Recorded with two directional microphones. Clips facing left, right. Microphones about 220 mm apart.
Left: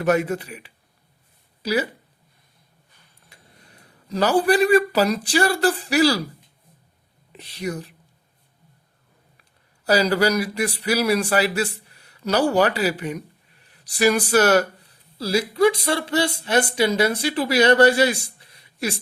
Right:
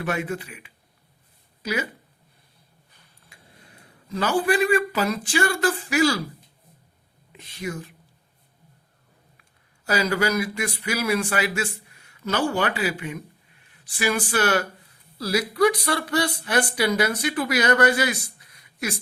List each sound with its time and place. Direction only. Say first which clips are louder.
0.0 s speech: left 7 dB; 40° left (ahead or behind)
3.2 s speech: even; 35° left (ahead or behind)
7.3 s speech: left 3 dB; 35° left (ahead or behind)
9.4 s speech: left 2 dB; 35° left (ahead or behind)
15.2 s speech: left 2 dB; 30° left (ahead or behind)